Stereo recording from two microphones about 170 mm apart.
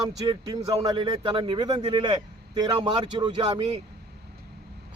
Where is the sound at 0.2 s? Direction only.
25° right (ahead or behind).